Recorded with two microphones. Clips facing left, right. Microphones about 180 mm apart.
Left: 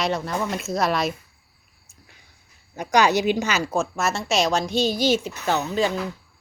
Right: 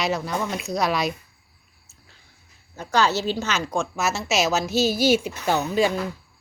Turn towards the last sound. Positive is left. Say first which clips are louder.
# right 1 dB
turn(degrees=-10)  # may be behind; listen again after turning